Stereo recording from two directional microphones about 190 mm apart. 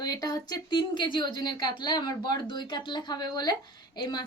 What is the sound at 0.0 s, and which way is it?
A woman's voice, 20° left (ahead or behind).